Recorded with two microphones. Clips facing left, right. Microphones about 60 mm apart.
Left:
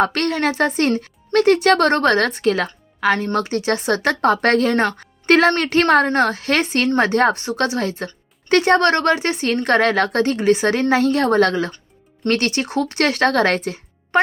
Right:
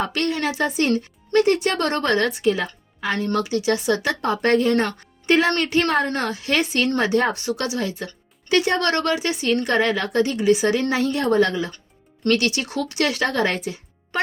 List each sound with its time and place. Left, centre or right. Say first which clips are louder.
0.0 s speech: left 5 dB; left
3.3 s a woman's voice: left 1 dB; left
6.1 s a woman's voice: left 6 dB; left
6.6 s speech: left 2 dB; left
7.0 s a woman's voice: left 5 dB; left
7.3 s speech: left 4 dB; left
9.6 s a woman's voice: left 4 dB; left
12.3 s speech: left 2 dB; left
13.7 s music: left 3 dB; left